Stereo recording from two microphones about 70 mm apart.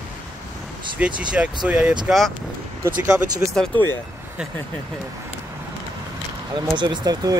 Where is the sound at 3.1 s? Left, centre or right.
Centre.